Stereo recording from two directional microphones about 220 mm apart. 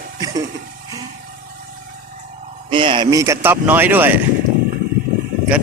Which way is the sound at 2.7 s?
20° right (ahead or behind).